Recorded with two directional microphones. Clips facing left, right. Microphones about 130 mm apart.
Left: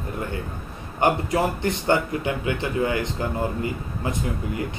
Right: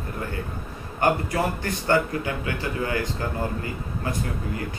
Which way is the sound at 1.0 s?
20° left (ahead or behind).